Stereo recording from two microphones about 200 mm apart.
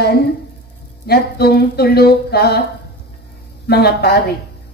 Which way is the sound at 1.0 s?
55° left (ahead or behind).